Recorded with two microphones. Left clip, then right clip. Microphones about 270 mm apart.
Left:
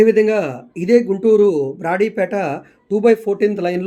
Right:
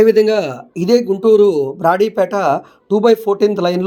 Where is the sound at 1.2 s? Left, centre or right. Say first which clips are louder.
Right 2 dB; centre.